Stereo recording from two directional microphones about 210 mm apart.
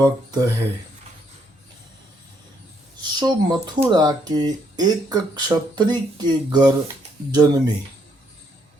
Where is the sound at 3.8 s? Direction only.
20° right (ahead or behind).